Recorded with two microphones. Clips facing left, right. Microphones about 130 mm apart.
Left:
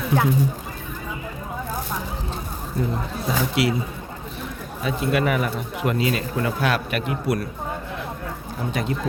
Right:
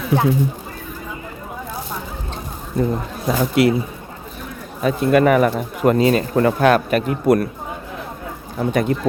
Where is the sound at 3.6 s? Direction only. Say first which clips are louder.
Right 7 dB; 50° right (ahead or behind).